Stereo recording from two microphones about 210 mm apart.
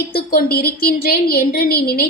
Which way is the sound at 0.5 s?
45° left (ahead or behind).